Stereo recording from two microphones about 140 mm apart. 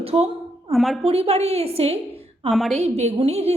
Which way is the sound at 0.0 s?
45° right (ahead or behind).